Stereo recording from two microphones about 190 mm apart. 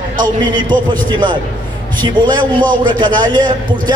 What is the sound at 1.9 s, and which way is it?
A man's voice, 25° right (ahead or behind).